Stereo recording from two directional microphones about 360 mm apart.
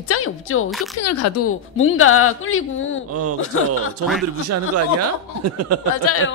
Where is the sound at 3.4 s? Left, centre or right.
Left.